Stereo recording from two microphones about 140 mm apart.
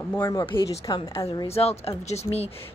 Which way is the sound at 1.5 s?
45° left (ahead or behind).